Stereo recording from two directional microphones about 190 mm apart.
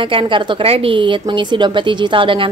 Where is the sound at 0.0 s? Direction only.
25° right (ahead or behind).